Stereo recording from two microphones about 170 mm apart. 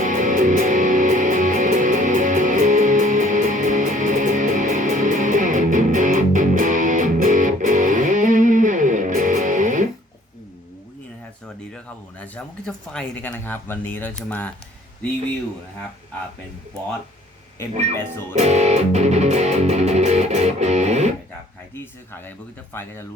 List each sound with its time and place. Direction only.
0.0 s music: 50° right (ahead or behind)
12.2 s a sound: 10° left (ahead or behind)
17.6 s speech: 15° left (ahead or behind)
18.3 s music: 40° right (ahead or behind)
22.7 s speech: 15° left (ahead or behind)